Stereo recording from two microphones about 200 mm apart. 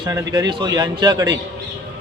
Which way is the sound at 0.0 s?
15° right (ahead or behind).